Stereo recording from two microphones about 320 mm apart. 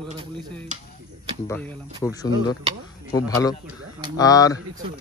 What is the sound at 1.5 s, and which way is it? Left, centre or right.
Speech, centre.